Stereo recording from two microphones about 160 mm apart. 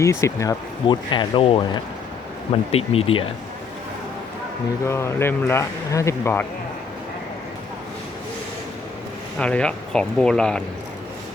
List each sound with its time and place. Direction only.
0.0 s speech: 20° left (ahead or behind); by 3.2 s 35° left (ahead or behind)
4.9 s speech: 15° left (ahead or behind)
9.4 s speech: 5° left (ahead or behind)